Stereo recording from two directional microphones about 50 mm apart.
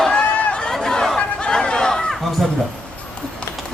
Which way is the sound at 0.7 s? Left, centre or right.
Centre.